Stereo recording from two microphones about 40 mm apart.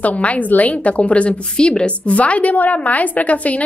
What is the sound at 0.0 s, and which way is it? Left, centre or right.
A woman's voice, left.